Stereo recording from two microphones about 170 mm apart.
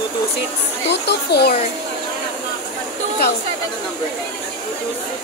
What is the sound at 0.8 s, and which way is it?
Speech, 80° left.